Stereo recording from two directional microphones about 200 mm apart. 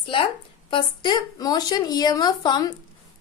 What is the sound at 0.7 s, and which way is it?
A woman's voice, 25° left (ahead or behind).